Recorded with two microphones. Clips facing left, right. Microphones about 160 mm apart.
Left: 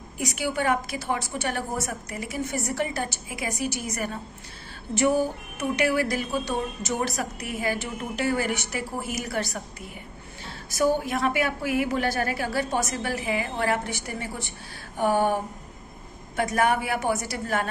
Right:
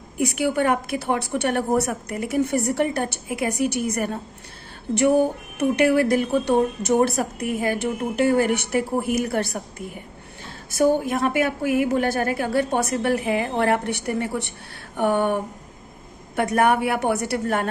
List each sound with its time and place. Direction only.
0.2 s a woman's voice: 60° right (ahead or behind)